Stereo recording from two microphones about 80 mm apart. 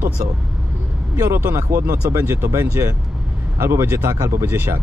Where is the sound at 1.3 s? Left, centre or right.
Right.